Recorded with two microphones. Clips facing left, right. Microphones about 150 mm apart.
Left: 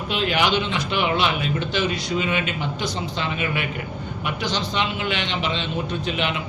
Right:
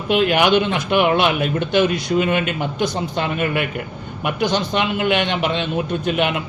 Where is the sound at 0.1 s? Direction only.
55° right (ahead or behind).